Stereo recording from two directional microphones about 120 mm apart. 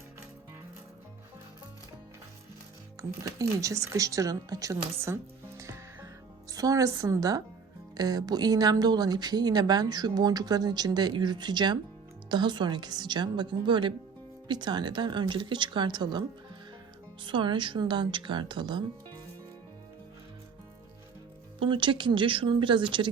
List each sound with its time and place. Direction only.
3.0 s a woman's voice: 25° right (ahead or behind)
17.2 s speech: 40° right (ahead or behind)
21.6 s speech: 45° right (ahead or behind)